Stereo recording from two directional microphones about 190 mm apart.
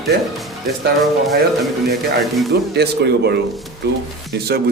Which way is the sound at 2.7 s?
60° right (ahead or behind).